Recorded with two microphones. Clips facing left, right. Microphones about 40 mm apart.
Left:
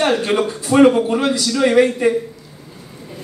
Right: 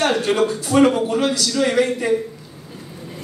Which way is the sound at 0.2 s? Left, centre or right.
Left.